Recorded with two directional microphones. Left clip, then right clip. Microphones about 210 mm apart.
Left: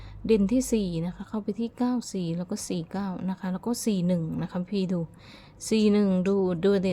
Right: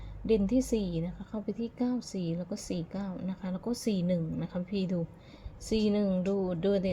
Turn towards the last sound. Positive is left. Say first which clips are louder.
# left 5 dB
turn(degrees=25)  # may be behind; listen again after turning